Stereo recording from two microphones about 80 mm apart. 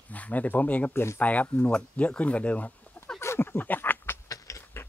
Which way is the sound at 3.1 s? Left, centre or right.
Left.